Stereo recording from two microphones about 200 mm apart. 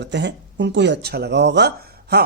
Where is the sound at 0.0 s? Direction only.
60° right (ahead or behind).